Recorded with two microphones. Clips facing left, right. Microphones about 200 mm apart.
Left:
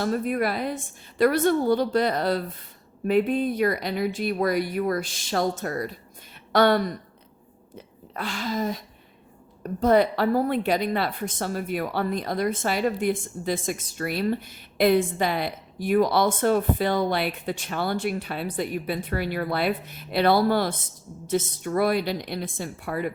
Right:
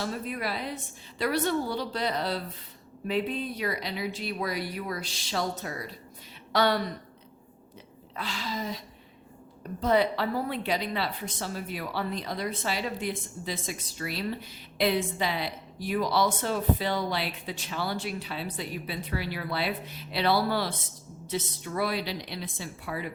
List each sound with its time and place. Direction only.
0.0 s a woman's voice: 50° left (ahead or behind)
8.1 s a woman's voice: 50° left (ahead or behind)
9.8 s a woman's voice: 50° left (ahead or behind)